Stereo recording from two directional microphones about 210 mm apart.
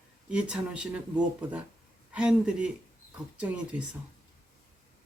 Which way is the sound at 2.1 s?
5° right (ahead or behind).